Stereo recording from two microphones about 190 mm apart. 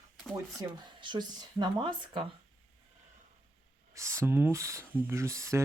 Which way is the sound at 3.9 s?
15° right (ahead or behind).